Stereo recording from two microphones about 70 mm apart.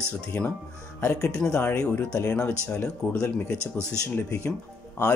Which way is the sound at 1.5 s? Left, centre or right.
Left.